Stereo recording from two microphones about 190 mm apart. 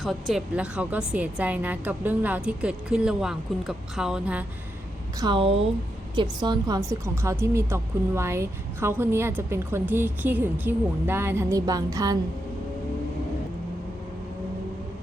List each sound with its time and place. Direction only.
0.0 s a woman's voice: centre (ahead or behind)
5.2 s a woman's voice: 25° right (ahead or behind)